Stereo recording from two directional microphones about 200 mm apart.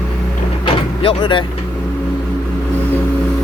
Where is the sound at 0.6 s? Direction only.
25° left (ahead or behind).